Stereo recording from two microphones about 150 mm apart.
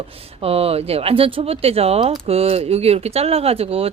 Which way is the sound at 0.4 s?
40° right (ahead or behind).